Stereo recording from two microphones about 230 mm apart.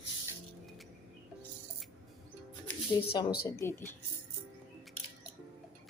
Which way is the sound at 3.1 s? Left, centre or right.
Centre.